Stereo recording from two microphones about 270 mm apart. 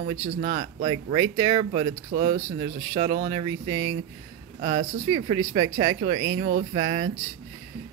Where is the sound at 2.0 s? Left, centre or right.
Right.